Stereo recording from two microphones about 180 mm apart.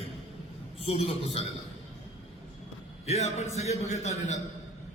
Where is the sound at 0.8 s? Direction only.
35° left (ahead or behind).